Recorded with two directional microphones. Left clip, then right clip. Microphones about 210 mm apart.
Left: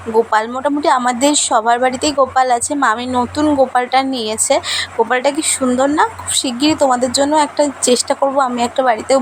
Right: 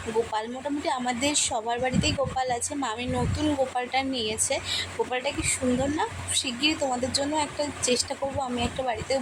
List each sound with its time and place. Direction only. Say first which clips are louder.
0.3 s a woman's voice: left 14 dB; 20° left (ahead or behind)